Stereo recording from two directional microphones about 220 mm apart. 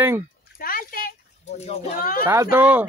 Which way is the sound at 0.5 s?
40° left (ahead or behind).